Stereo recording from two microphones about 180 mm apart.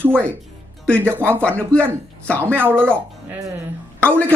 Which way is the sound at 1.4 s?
5° left (ahead or behind).